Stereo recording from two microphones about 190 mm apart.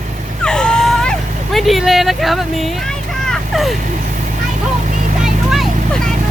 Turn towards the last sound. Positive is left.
turn(degrees=0)  # may be behind; listen again after turning